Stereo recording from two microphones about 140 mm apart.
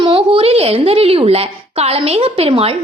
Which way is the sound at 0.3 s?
45° right (ahead or behind).